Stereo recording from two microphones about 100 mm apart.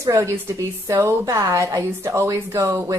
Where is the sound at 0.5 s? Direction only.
30° right (ahead or behind).